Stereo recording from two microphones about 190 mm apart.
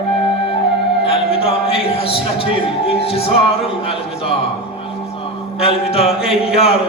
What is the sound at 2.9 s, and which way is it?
Music, 30° left (ahead or behind).